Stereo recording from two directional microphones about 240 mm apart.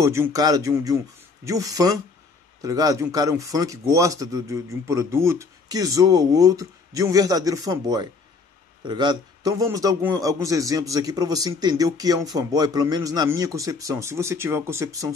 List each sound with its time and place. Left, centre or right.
0.0 s a man's voice: centre